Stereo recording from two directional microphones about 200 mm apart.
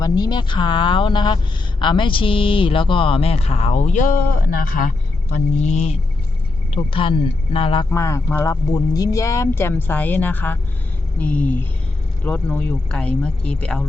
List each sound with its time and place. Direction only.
0.0 s speech: 20° left (ahead or behind); by 4.2 s 40° left (ahead or behind)
5.3 s speech: 35° left (ahead or behind)
7.9 s speech: 15° left (ahead or behind)